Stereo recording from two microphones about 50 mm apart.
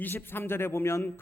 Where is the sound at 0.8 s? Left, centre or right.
Left.